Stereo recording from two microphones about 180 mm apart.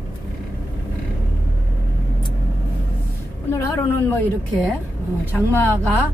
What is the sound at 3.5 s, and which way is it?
Speech, 15° left (ahead or behind).